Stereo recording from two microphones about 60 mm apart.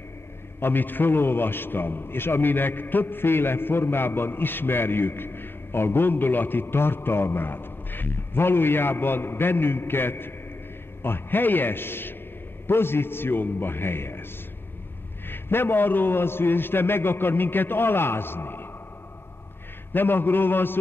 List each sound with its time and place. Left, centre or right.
0.6 s a man's voice: left
15.2 s a man's voice: left
19.9 s a man's voice: left